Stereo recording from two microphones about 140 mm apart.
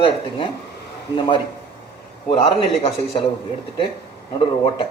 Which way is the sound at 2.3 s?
40° left (ahead or behind).